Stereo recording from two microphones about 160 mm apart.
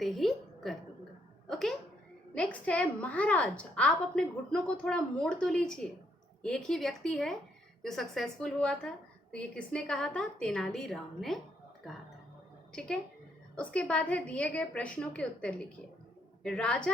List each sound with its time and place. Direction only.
0.0 s a woman's voice: centre (ahead or behind)
1.5 s a sound: centre (ahead or behind)
2.3 s a woman's voice: 5° left (ahead or behind)
13.6 s a woman's voice: 5° left (ahead or behind)